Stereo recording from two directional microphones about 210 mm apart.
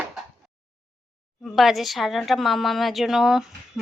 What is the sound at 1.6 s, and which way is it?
A woman's voice, centre (ahead or behind).